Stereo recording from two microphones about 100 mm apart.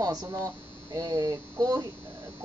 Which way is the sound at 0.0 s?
40° right (ahead or behind).